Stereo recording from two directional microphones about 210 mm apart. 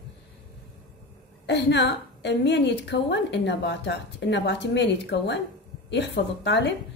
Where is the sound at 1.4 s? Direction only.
55° left (ahead or behind).